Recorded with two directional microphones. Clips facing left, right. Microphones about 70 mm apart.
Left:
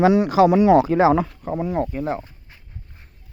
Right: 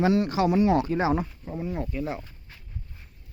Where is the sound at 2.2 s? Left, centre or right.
Left.